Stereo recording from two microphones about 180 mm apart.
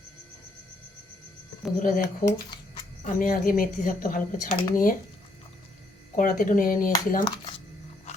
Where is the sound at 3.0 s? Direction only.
50° left (ahead or behind).